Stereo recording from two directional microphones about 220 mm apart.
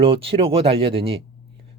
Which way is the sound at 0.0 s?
25° right (ahead or behind).